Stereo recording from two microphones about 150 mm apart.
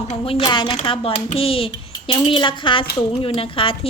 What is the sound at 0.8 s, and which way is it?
Speech, 40° left (ahead or behind).